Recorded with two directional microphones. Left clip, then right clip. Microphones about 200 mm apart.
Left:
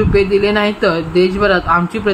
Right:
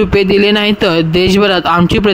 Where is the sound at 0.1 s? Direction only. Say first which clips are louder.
Right 1 dB; 40° right (ahead or behind).